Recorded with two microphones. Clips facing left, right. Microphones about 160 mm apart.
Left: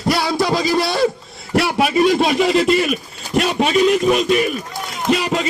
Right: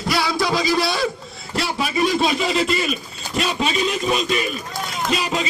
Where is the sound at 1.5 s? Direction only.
65° left (ahead or behind).